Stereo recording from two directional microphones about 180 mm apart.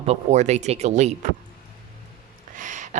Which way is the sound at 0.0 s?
35° right (ahead or behind).